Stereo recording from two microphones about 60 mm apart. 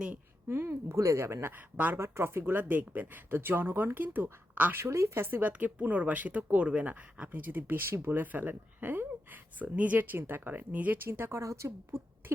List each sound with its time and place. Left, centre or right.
0.4 s a woman's voice: right
0.9 s a woman's voice: right
1.7 s speech: right
2.0 s speech: right
4.8 s speech: right; by 7.3 s centre
7.3 s speech: right
11.1 s a woman's voice: right